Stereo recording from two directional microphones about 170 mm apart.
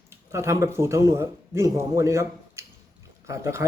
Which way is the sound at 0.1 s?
15° right (ahead or behind).